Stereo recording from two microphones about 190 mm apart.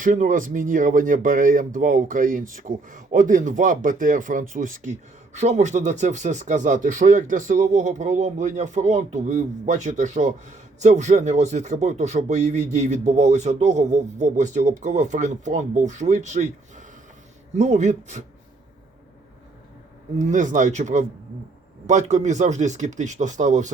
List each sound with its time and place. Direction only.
0.0 s speech: 45° right (ahead or behind)
20.1 s speech: 40° right (ahead or behind)